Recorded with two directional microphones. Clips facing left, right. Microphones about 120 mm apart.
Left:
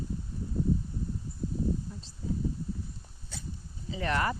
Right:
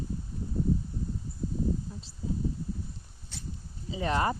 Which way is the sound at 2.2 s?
5° right (ahead or behind).